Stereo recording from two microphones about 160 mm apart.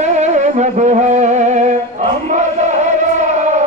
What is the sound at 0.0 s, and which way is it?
Music, 45° right (ahead or behind).